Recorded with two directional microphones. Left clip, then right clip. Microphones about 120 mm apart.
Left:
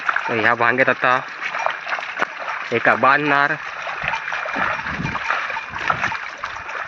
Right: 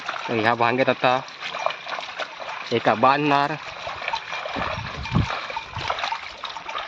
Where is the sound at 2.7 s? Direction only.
40° right (ahead or behind).